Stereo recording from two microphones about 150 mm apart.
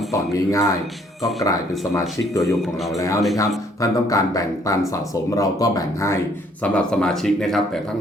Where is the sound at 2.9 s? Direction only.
20° left (ahead or behind).